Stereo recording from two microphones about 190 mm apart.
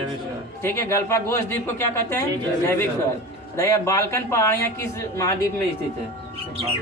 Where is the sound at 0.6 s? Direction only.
15° left (ahead or behind).